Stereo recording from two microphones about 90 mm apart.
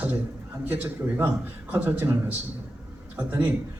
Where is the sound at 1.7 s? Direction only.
20° right (ahead or behind).